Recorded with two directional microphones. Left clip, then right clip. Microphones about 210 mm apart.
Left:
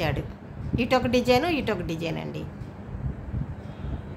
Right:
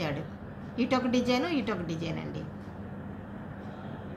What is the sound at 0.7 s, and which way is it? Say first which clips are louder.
A woman's voice: left 5 dB; 45° left (ahead or behind).